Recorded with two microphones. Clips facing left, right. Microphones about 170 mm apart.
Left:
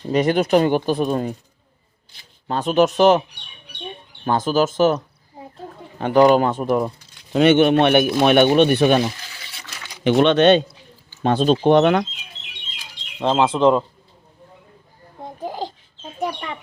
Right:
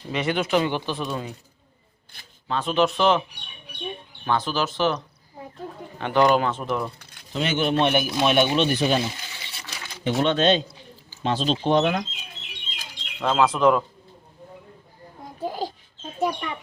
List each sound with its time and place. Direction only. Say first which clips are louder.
0.1 s speech: left 7 dB; 40° left (ahead or behind)
2.1 s speech: right 2 dB; 55° right (ahead or behind)
2.5 s speech: left 5 dB; 45° left (ahead or behind)
4.3 s speech: left 6 dB; 45° left (ahead or behind)
6.0 s speech: left 6 dB; 45° left (ahead or behind)
7.3 s speech: left 9 dB; 65° left (ahead or behind)
10.0 s speech: left 7 dB; 80° left
11.2 s speech: left 7 dB; 50° left (ahead or behind)
13.1 s speech: left 3 dB; 30° left (ahead or behind)
15.4 s a sound: even; 20° left (ahead or behind)